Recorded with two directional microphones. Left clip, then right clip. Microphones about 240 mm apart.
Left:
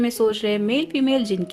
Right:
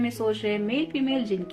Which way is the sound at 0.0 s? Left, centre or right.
Left.